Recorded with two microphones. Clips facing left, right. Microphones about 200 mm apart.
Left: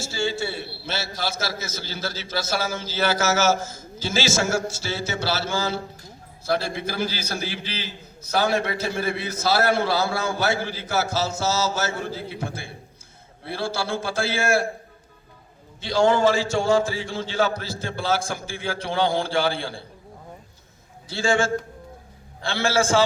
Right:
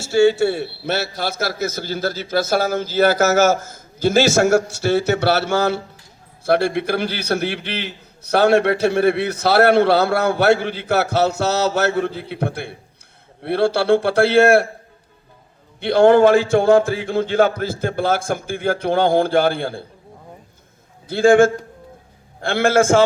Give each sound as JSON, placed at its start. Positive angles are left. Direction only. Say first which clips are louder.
{"t": 0.0, "sound": "a man's voice", "louder": "right 12 dB", "side_deg": -65}
{"t": 15.8, "sound": "speech", "louder": "right 7 dB", "side_deg": -60}
{"t": 21.1, "sound": "speech", "louder": "right 10 dB", "side_deg": -55}